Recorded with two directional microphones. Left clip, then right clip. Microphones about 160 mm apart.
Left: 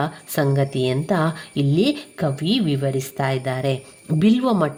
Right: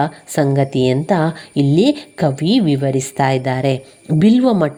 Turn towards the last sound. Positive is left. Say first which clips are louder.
# right 5 dB
turn(degrees=-20)  # may be behind; listen again after turning